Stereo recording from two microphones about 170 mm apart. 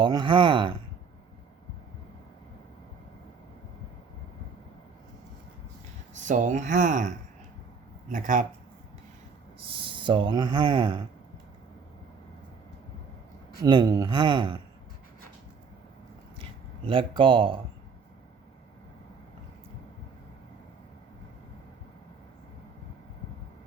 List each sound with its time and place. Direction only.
0.0 s speech: 25° right (ahead or behind)
6.1 s speech: 45° right (ahead or behind)
8.1 s speech: 50° right (ahead or behind)
9.6 s speech: 30° right (ahead or behind)
13.6 s speech: 25° right (ahead or behind)
16.4 s speech: 30° right (ahead or behind)